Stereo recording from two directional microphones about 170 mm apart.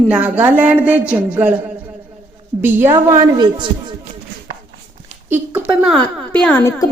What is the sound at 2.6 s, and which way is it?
A woman's voice, 15° right (ahead or behind).